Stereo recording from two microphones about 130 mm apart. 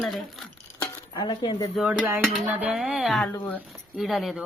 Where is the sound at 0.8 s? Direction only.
35° left (ahead or behind).